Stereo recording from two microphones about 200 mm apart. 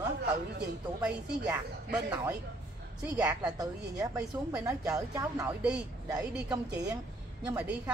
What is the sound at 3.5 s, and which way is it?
Speech, 15° right (ahead or behind).